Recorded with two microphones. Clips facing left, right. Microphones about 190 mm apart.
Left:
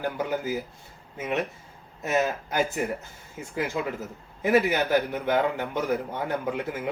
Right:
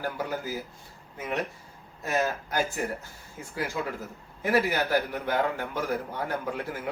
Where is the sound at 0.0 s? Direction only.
20° left (ahead or behind).